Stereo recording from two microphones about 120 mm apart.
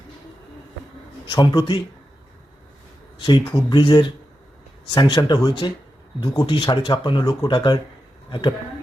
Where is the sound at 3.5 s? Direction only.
35° left (ahead or behind).